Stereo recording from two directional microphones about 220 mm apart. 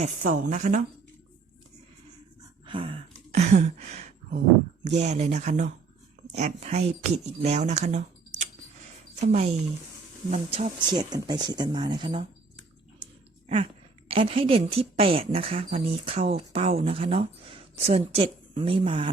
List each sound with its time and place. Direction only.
0.0 s speech: 40° right (ahead or behind)
2.6 s a sound: 25° right (ahead or behind)
4.8 s speech: 30° right (ahead or behind)
14.1 s speech: 25° right (ahead or behind)